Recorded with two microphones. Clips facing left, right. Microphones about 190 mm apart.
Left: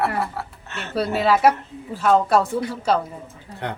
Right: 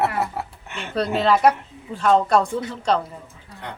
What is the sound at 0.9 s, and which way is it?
Speech, 5° left (ahead or behind).